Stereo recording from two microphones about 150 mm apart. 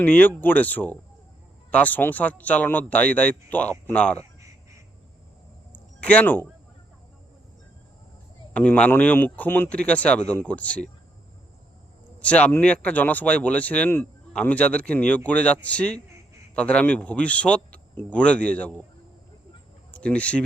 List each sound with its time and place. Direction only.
0.0 s speech: 10° left (ahead or behind)
4.2 s a sound: 20° right (ahead or behind)
6.0 s speech: 10° left (ahead or behind)
8.5 s speech: 10° left (ahead or behind)
12.2 s speech: 10° left (ahead or behind)
19.9 s speech: 10° left (ahead or behind)